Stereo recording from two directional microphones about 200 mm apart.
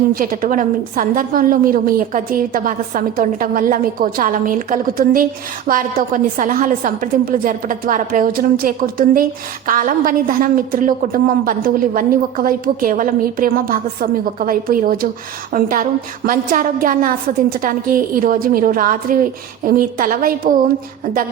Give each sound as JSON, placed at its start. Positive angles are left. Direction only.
{"t": 0.1, "sound": "a woman's voice", "side_deg": -45}